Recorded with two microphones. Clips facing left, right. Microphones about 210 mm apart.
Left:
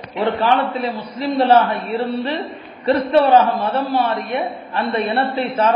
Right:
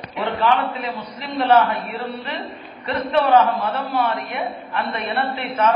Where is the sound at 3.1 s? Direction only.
30° left (ahead or behind).